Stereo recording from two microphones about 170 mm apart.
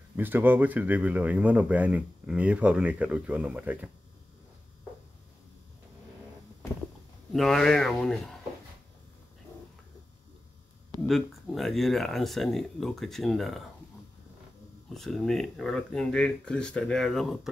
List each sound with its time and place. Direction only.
0.1 s speech: 10° right (ahead or behind)
7.3 s speech: centre (ahead or behind)
11.1 s speech: centre (ahead or behind)
14.9 s speech: centre (ahead or behind)